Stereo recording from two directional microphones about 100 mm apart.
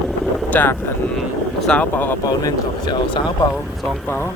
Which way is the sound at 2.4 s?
45° left (ahead or behind).